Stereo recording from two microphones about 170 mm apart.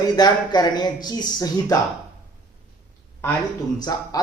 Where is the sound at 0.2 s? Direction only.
25° left (ahead or behind).